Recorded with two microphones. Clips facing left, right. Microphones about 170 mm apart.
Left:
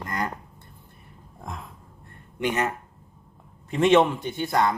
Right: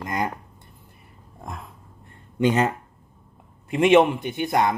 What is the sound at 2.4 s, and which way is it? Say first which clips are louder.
Speech: right 5 dB; 30° right (ahead or behind).